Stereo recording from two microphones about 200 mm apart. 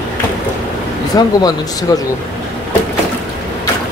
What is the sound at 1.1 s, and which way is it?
Speech, 20° left (ahead or behind).